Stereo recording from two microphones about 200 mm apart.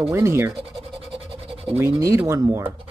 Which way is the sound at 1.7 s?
10° right (ahead or behind).